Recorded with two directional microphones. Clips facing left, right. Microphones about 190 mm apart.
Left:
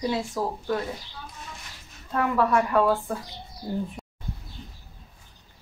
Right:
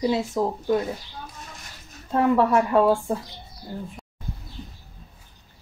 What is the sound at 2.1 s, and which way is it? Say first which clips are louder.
Speech: right 4 dB; 25° right (ahead or behind).